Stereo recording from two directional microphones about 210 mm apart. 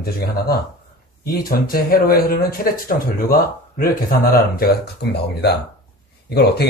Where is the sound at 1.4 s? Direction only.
45° left (ahead or behind).